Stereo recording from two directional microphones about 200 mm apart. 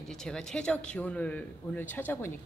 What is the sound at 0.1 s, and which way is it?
Speech, centre (ahead or behind).